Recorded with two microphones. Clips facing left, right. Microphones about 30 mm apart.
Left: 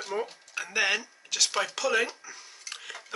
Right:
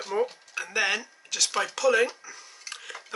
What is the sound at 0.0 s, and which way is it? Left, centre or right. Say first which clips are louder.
Speech: right 5 dB; centre.